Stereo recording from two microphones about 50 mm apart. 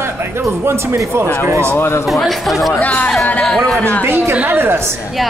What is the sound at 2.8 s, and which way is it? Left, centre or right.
Speech, left.